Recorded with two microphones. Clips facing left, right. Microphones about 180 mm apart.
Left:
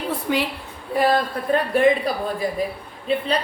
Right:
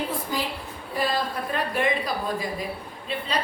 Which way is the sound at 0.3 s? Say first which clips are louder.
Left 10 dB; 70° left (ahead or behind).